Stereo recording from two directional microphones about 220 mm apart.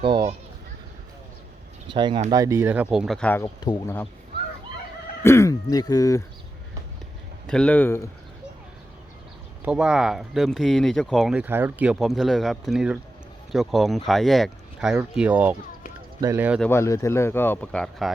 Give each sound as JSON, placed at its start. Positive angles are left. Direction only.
{"t": 0.0, "sound": "children playing", "side_deg": -20}
{"t": 1.9, "sound": "speech", "side_deg": -20}
{"t": 5.2, "sound": "speech", "side_deg": 15}
{"t": 7.4, "sound": "speech", "side_deg": 5}
{"t": 9.6, "sound": "speech", "side_deg": -5}
{"t": 16.6, "sound": "speech", "side_deg": 10}